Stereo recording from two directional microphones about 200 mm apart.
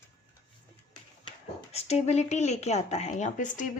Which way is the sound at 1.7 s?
30° left (ahead or behind).